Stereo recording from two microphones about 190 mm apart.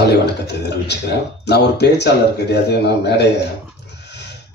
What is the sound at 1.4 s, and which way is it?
Speech, 60° left (ahead or behind).